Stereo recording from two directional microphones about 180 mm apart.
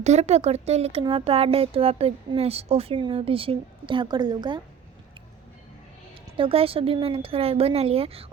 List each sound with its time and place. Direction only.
0.0 s speech: 40° right (ahead or behind)
6.3 s speech: 30° right (ahead or behind)